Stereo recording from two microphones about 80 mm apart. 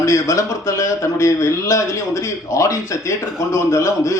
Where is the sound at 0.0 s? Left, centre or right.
Left.